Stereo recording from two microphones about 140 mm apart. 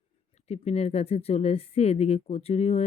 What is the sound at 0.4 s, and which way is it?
Speech, 50° left (ahead or behind).